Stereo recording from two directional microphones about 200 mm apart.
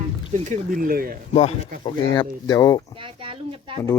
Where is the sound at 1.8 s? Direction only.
25° left (ahead or behind).